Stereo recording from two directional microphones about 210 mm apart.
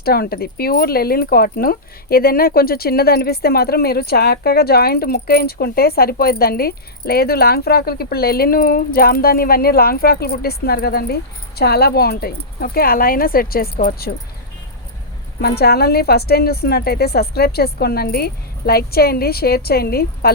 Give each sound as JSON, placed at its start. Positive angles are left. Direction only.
{"t": 0.0, "sound": "speech", "side_deg": 45}
{"t": 15.4, "sound": "speech", "side_deg": 50}